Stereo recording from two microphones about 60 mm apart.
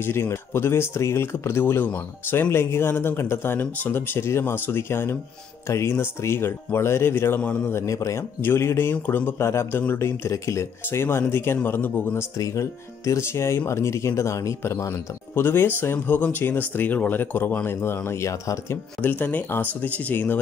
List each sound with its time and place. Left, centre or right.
0.0 s speech: left
7.8 s speech: left
8.4 s speech: left
10.3 s speech: left
10.9 s speech: left
12.4 s speech: left
17.6 s speech: left
18.9 s speech: left